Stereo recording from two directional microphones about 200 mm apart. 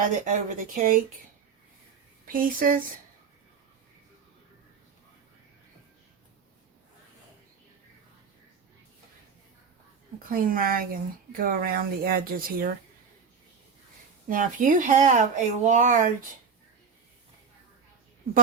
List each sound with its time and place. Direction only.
0.0 s speech: 40° right (ahead or behind)
2.2 s speech: 45° right (ahead or behind)
10.2 s speech: 45° right (ahead or behind)
14.3 s speech: 40° right (ahead or behind)